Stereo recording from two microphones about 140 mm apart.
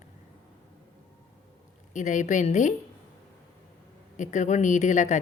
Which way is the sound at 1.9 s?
60° left (ahead or behind).